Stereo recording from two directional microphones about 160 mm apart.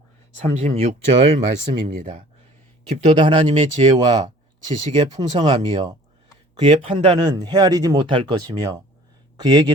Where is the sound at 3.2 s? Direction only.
35° right (ahead or behind).